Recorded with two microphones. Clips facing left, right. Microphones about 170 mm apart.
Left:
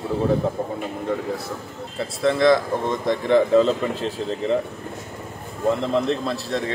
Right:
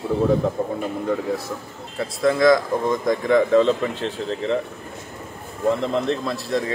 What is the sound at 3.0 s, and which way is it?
Speech, 30° left (ahead or behind).